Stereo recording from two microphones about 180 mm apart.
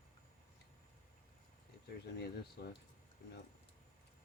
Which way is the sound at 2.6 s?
60° left (ahead or behind).